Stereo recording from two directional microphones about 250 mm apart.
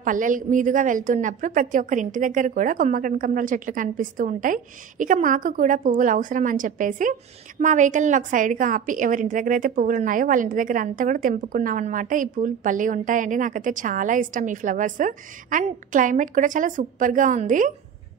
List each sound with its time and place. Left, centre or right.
0.0 s a woman's voice: right